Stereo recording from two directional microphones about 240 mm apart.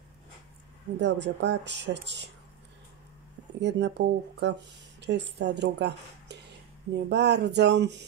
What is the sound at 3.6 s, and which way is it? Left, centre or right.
Speech, right.